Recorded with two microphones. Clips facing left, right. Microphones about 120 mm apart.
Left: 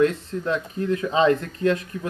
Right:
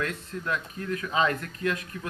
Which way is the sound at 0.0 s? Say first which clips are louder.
Left 11 dB; 25° left (ahead or behind).